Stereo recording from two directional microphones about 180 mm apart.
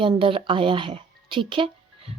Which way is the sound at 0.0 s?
30° right (ahead or behind).